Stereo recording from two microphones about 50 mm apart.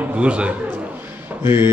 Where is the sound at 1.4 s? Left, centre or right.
Right.